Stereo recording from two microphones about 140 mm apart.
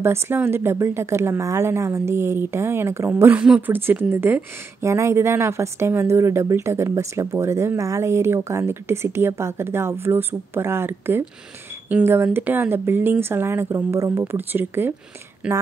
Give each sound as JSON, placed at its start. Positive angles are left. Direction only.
{"t": 0.0, "sound": "a woman's voice", "side_deg": -15}